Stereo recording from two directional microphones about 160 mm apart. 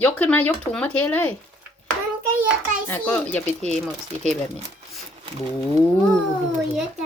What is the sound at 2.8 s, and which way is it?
Speech, 10° left (ahead or behind).